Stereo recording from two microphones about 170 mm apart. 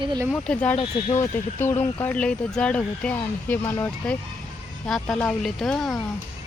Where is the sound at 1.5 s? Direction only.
15° left (ahead or behind).